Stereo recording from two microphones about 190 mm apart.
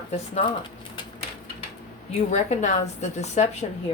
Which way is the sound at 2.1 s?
35° left (ahead or behind).